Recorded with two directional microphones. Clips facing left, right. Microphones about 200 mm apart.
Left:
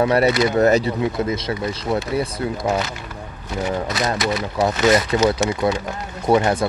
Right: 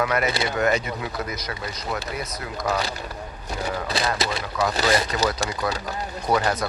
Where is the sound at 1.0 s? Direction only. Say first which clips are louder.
Left 9 dB; 25° left (ahead or behind).